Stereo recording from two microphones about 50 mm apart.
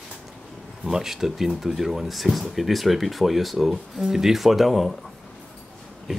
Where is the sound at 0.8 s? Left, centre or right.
Centre.